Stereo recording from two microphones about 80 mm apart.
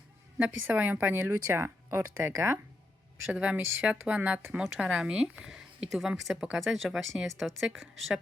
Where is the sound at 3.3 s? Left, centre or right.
Centre.